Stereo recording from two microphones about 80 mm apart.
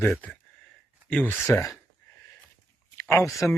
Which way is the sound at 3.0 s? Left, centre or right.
Left.